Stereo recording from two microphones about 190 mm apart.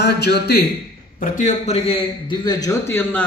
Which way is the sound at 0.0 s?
60° left (ahead or behind).